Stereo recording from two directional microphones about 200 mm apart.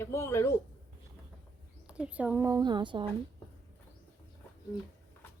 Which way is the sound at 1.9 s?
5° right (ahead or behind).